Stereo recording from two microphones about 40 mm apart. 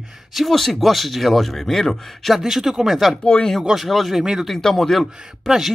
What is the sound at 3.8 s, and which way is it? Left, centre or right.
Speech, centre.